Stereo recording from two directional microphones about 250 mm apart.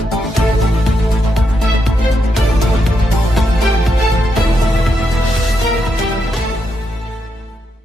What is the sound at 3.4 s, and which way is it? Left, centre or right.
Music, centre.